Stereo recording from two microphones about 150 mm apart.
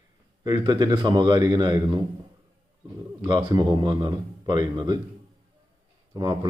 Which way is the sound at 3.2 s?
30° right (ahead or behind).